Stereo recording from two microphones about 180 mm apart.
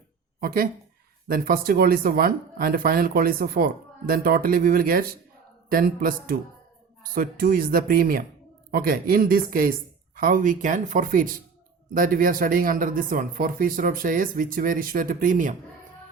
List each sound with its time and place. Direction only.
0.3 s speech: 55° right (ahead or behind)